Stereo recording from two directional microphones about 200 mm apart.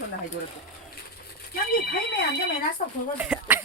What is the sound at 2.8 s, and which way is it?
Speech, 40° left (ahead or behind).